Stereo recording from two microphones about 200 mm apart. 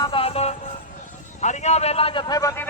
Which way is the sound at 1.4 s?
35° left (ahead or behind).